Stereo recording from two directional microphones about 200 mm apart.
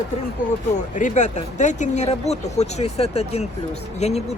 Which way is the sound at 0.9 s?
40° left (ahead or behind).